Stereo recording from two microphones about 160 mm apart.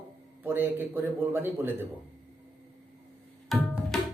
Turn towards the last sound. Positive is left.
turn(degrees=0)  # may be behind; listen again after turning